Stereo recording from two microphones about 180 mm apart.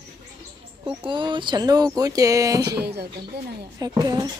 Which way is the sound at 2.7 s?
65° right (ahead or behind).